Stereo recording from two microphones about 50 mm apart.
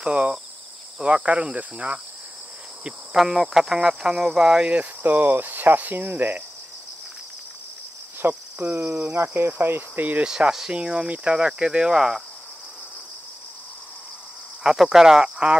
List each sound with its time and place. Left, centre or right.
0.0 s speech: centre
3.2 s speech: centre
5.0 s cricket: right
8.2 s cricket: right
8.7 s speech: right
9.5 s cricket: right
10.2 s speech: centre
14.6 s speech: centre